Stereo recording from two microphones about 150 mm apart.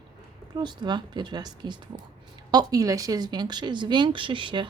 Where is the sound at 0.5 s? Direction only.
30° right (ahead or behind).